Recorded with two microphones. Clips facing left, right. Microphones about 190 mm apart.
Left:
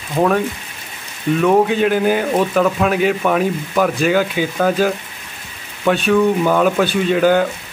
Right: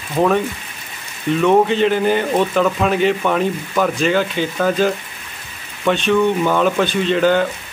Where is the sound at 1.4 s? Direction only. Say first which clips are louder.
Even; 5° left (ahead or behind).